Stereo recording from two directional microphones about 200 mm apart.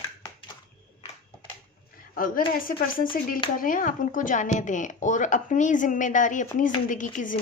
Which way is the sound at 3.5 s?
45° left (ahead or behind).